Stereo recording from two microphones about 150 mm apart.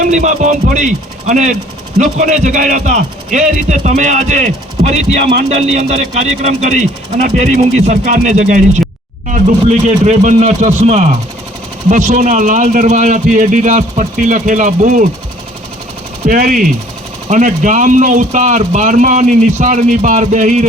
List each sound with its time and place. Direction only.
0.0 s speech: 55° right (ahead or behind)
16.2 s speech: 60° right (ahead or behind)